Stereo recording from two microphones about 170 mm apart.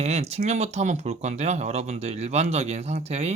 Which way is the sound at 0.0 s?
40° right (ahead or behind).